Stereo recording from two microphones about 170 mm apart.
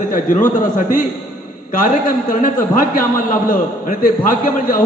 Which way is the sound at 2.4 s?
55° left (ahead or behind).